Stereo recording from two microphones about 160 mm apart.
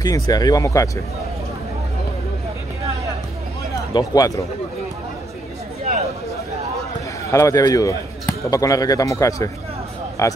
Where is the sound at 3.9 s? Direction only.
25° left (ahead or behind).